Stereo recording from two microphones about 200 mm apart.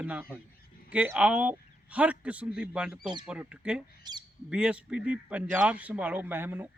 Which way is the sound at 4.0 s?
20° right (ahead or behind).